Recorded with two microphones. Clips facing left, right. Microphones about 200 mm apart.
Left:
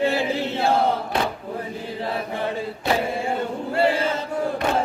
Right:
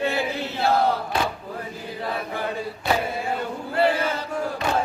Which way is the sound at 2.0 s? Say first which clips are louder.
Left 1 dB; 25° left (ahead or behind).